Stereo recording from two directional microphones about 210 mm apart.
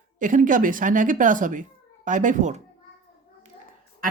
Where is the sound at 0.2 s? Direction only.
40° right (ahead or behind).